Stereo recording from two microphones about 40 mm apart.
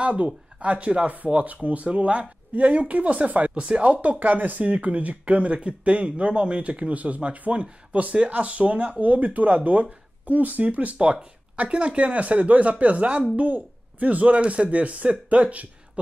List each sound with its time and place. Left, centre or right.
0.0 s speech: right
4.2 s speech: right
11.0 s speech: right